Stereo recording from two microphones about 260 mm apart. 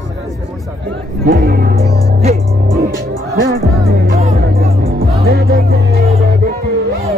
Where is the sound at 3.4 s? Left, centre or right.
Right.